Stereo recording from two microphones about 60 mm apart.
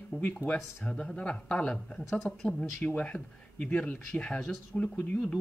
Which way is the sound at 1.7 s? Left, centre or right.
Centre.